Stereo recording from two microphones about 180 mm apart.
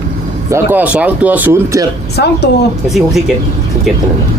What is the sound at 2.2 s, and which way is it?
Speech, 70° left (ahead or behind).